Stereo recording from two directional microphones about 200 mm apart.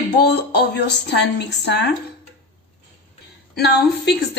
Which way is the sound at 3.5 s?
55° left (ahead or behind).